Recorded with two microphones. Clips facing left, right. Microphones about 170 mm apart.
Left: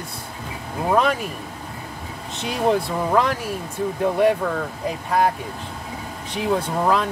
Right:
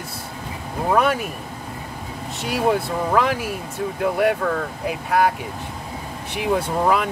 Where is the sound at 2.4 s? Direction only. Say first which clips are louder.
Even; 5° right (ahead or behind).